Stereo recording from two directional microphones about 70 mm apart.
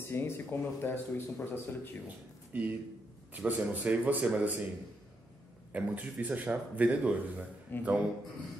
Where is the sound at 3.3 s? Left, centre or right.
Right.